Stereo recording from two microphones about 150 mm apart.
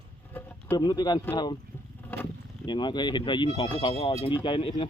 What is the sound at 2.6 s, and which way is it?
Speech, 30° left (ahead or behind).